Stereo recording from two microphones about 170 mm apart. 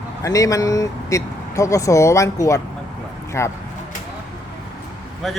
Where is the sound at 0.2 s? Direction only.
20° left (ahead or behind).